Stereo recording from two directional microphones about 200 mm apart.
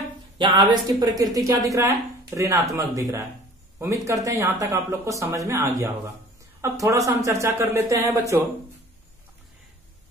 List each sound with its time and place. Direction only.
0.4 s speech: 25° right (ahead or behind)